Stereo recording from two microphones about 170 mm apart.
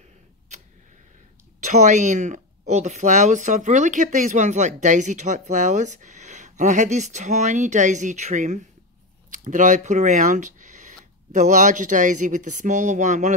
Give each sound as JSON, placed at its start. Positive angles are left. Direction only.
{"t": 1.6, "sound": "speech", "side_deg": -45}